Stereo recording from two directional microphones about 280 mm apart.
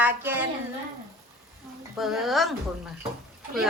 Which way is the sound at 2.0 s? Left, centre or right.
Centre.